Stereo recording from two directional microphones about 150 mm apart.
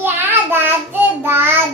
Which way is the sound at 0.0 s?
15° right (ahead or behind).